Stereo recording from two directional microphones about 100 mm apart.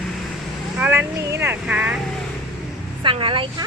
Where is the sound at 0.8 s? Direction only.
15° right (ahead or behind).